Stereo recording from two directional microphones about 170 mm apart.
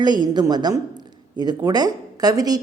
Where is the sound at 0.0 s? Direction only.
25° right (ahead or behind).